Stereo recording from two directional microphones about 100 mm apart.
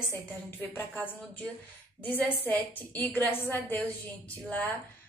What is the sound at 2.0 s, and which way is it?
A woman's voice, 20° left (ahead or behind).